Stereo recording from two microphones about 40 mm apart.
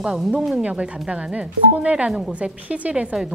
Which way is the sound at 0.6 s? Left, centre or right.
Right.